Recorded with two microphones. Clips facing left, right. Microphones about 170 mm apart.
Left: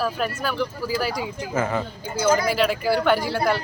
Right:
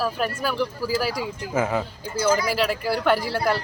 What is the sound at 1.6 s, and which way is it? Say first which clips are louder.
Speech: right 1 dB; 15° right (ahead or behind).